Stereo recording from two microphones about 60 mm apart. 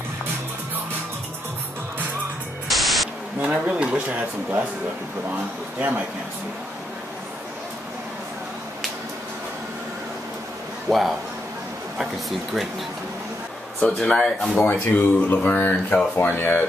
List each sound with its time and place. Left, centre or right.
2.7 s static: centre
3.6 s speech: centre
5.8 s speech: right
10.9 s speech: centre
13.8 s speech: centre
14.7 s speech: left